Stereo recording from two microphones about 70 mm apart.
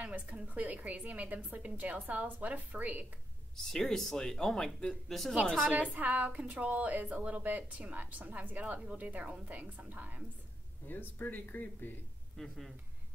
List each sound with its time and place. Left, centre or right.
0.0 s a woman's voice: centre
3.5 s speech: centre
5.7 s a woman's voice: right
10.9 s speech: left
12.4 s speech: centre